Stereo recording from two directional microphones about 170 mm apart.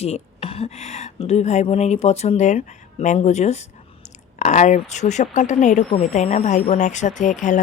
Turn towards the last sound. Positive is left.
turn(degrees=45)  # may be behind; listen again after turning